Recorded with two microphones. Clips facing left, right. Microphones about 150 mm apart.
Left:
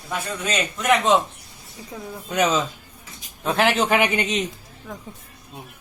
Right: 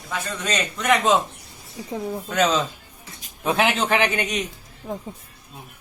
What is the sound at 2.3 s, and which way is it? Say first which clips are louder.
Speech: even; 15° left (ahead or behind).